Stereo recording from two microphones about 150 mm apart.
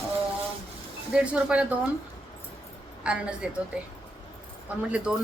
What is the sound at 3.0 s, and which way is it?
Speech, 5° right (ahead or behind).